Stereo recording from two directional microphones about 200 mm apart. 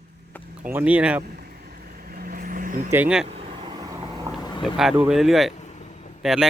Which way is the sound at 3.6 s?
20° right (ahead or behind).